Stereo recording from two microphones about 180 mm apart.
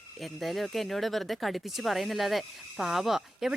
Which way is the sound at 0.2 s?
Centre (ahead or behind).